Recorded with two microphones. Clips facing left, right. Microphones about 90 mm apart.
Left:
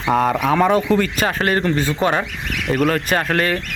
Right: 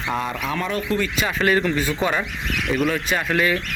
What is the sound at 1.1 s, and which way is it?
Speech, 45° left (ahead or behind).